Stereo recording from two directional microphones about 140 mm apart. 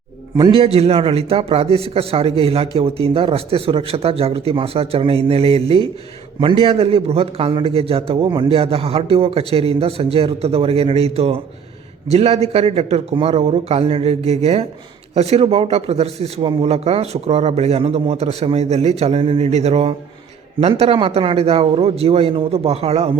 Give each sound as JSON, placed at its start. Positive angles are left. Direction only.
{"t": 0.5, "sound": "a man's voice", "side_deg": -45}